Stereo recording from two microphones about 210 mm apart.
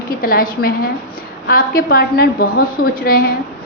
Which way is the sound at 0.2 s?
40° left (ahead or behind).